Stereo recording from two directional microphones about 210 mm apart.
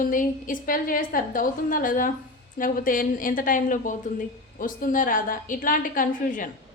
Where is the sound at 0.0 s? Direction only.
40° left (ahead or behind).